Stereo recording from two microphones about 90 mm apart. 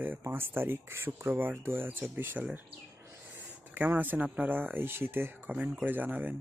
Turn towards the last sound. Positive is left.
turn(degrees=-20)  # may be behind; listen again after turning